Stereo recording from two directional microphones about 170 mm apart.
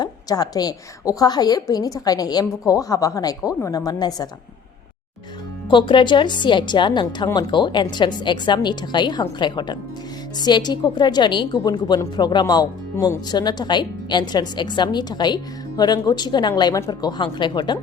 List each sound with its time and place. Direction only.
0.0 s a woman's voice: 20° left (ahead or behind)
5.6 s a woman's voice: 30° left (ahead or behind)